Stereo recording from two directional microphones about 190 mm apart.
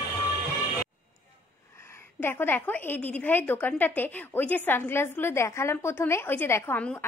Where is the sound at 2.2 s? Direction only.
10° left (ahead or behind).